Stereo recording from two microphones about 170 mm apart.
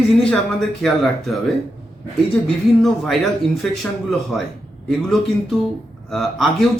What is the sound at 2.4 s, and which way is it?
Speech, centre (ahead or behind).